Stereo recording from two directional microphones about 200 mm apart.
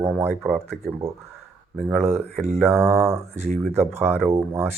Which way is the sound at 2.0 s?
30° right (ahead or behind).